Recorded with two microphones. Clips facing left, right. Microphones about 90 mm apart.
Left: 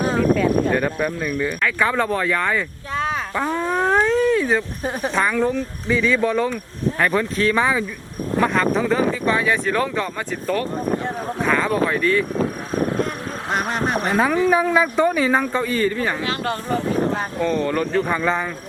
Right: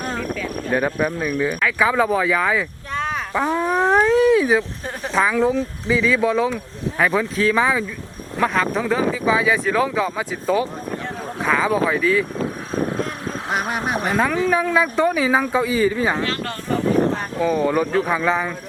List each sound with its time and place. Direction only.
0.2 s a sound: 45° left (ahead or behind)
0.7 s speech: 10° right (ahead or behind)
3.4 s speech: 10° right (ahead or behind)
4.8 s speech: 15° left (ahead or behind)
5.1 s speech: centre (ahead or behind)
13.5 s speech: 5° right (ahead or behind)
14.1 s speech: 5° left (ahead or behind); by 16.1 s 10° right (ahead or behind)
16.2 s speech: 15° left (ahead or behind)
17.4 s speech: 10° right (ahead or behind)